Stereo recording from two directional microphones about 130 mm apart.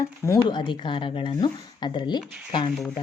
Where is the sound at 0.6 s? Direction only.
40° left (ahead or behind).